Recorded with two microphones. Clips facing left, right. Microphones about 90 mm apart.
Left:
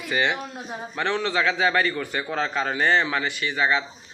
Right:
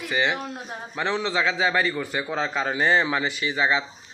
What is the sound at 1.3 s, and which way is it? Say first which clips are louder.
A man's voice: left 2 dB; 20° right (ahead or behind).